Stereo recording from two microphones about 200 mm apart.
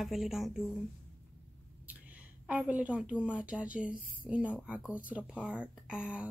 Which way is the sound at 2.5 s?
5° right (ahead or behind).